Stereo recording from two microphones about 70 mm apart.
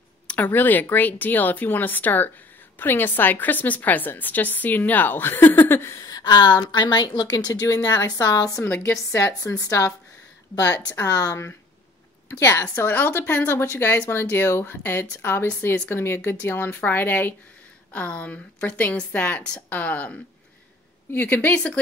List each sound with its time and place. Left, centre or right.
0.3 s speech: left
5.9 s a woman's voice: left
7.6 s a woman's voice: left
8.6 s speech: left
8.9 s a woman's voice: left
12.3 s speech: left